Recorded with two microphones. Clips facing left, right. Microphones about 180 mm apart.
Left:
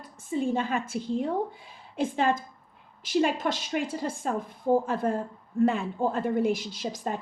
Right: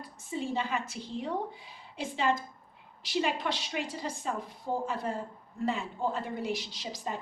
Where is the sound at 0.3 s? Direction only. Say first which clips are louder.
Left 6 dB; 50° left (ahead or behind).